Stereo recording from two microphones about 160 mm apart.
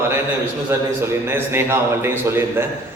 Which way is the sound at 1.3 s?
15° right (ahead or behind).